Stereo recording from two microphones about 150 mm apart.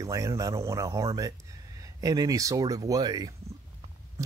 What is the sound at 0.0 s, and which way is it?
Speech, 20° right (ahead or behind).